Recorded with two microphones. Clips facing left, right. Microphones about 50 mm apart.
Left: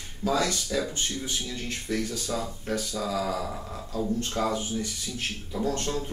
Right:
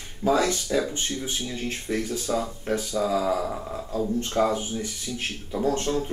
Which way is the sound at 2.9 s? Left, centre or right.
Centre.